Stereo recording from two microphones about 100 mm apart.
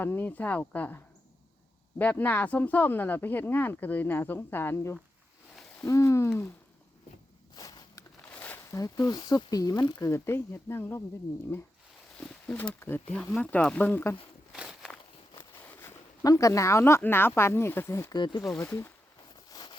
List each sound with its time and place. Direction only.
0.0 s speech: 20° left (ahead or behind)
7.5 s a sound: 40° left (ahead or behind)
8.3 s a sound: 15° left (ahead or behind)
8.7 s speech: 40° left (ahead or behind)
10.0 s speech: 25° left (ahead or behind)
12.1 s wild animals: 10° left (ahead or behind)
12.5 s speech: 20° left (ahead or behind)
14.5 s walk: 5° right (ahead or behind)
15.4 s a sound: 25° left (ahead or behind)
16.2 s speech: 35° left (ahead or behind)
18.1 s speech: 50° left (ahead or behind)
19.5 s a sound: 40° left (ahead or behind)